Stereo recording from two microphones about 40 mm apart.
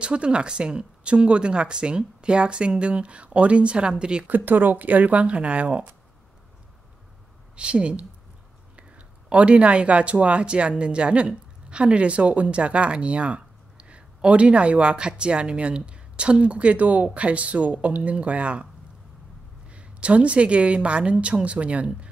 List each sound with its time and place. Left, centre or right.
0.0 s speech: right
4.3 s speech: right
7.5 s speech: right
19.7 s speech: right